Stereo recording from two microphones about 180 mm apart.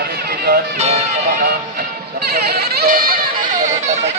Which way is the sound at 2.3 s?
60° right (ahead or behind).